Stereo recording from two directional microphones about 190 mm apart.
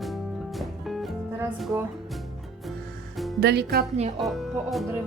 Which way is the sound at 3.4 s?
60° right (ahead or behind).